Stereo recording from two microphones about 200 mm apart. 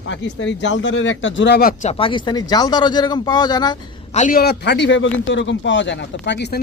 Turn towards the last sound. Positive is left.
turn(degrees=60)  # may be behind; listen again after turning